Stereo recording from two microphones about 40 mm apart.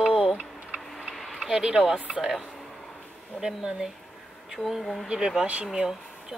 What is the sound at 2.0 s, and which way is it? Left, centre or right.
Speech, right.